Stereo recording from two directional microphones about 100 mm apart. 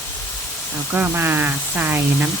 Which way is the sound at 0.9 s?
20° right (ahead or behind).